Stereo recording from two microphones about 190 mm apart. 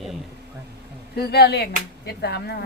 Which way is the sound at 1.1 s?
60° left (ahead or behind).